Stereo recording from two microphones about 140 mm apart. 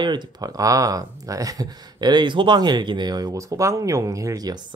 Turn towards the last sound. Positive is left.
turn(degrees=-25)  # may be behind; listen again after turning